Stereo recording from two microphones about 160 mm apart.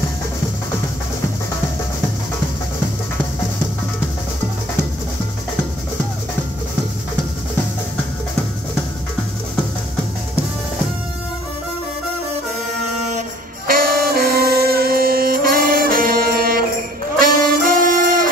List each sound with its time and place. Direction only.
13.7 s music: 65° right (ahead or behind)
17.2 s brass instrument: 60° right (ahead or behind)